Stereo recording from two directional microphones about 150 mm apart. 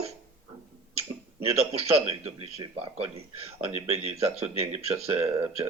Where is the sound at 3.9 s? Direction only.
45° right (ahead or behind).